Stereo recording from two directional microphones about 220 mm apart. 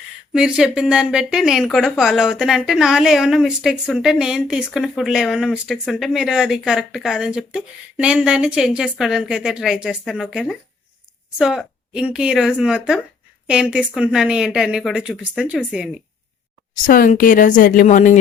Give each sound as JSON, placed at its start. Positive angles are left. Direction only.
{"t": 0.3, "sound": "a woman's voice", "side_deg": -5}
{"t": 16.8, "sound": "speech", "side_deg": 40}